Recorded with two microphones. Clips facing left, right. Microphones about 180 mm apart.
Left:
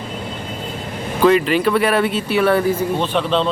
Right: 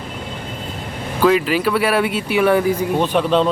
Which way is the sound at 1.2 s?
5° right (ahead or behind).